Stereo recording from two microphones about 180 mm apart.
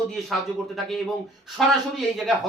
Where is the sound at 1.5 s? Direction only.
Centre (ahead or behind).